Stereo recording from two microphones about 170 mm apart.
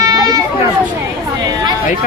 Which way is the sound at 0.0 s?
20° right (ahead or behind).